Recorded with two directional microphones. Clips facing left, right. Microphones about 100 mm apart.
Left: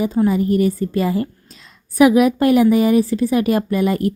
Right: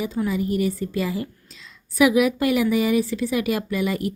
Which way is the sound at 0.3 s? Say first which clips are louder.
Left 6 dB; 45° left (ahead or behind).